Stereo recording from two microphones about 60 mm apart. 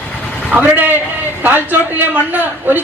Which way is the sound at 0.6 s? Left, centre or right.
Right.